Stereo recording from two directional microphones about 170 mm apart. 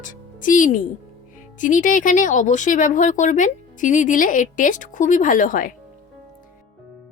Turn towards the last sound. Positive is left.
turn(degrees=55)  # may be behind; listen again after turning